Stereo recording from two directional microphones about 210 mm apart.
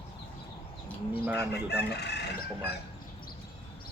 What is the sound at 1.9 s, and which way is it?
Speech, 50° left (ahead or behind).